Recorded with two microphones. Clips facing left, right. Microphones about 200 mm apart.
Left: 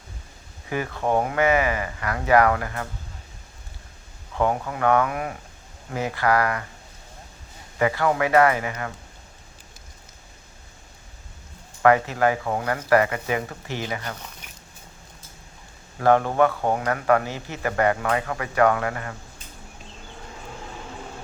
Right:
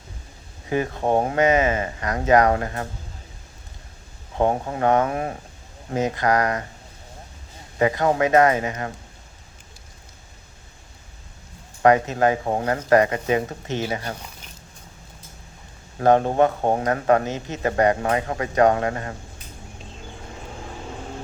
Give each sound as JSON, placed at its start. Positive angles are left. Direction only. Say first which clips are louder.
{"t": 0.7, "sound": "speech", "louder": "right 3 dB", "side_deg": -25}
{"t": 4.4, "sound": "speech", "louder": "right 2 dB", "side_deg": -30}
{"t": 7.8, "sound": "speech", "louder": "right 2 dB", "side_deg": -25}
{"t": 11.8, "sound": "speech", "louder": "right 1 dB", "side_deg": -20}
{"t": 16.0, "sound": "speech", "louder": "right 2 dB", "side_deg": -25}